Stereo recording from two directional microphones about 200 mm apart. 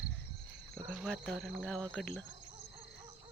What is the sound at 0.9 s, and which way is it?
Speech, 5° left (ahead or behind).